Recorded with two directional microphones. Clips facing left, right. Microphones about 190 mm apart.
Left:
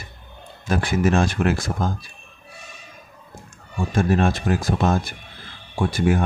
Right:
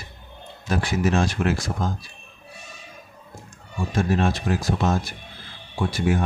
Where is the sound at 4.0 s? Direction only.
55° left (ahead or behind).